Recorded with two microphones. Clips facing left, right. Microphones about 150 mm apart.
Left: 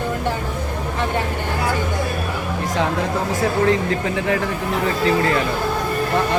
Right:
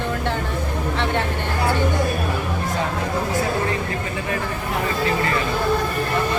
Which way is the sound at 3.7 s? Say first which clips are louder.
Left 6 dB; 75° left (ahead or behind).